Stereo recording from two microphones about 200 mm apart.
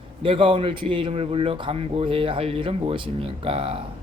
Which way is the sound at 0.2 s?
25° right (ahead or behind).